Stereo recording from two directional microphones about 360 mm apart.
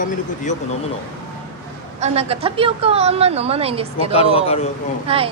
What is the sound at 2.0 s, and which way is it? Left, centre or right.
A woman's voice, centre.